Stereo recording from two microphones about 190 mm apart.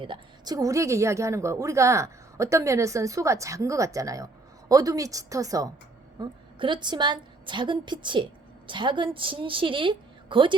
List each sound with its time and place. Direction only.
0.0 s a woman's voice: 25° right (ahead or behind)